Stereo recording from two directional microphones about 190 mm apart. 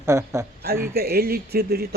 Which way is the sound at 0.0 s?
15° right (ahead or behind).